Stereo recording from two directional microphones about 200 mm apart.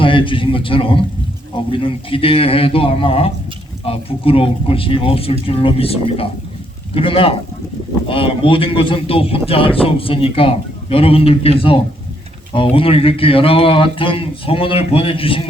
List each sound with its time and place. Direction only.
0.0 s a man's voice: 25° left (ahead or behind)